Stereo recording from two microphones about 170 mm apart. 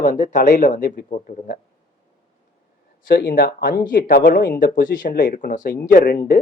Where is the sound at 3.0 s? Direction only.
60° left (ahead or behind).